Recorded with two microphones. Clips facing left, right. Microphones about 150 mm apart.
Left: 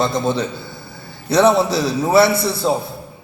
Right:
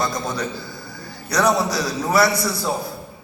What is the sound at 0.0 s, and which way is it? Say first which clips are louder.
A man's voice: left 6 dB; 25° left (ahead or behind).